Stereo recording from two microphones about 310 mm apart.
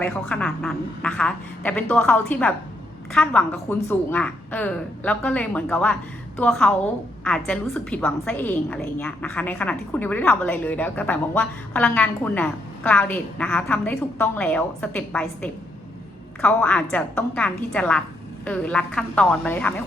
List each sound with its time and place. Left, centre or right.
0.0 s a woman's voice: centre